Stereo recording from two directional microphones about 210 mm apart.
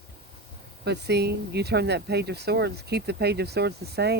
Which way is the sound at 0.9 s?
50° right (ahead or behind).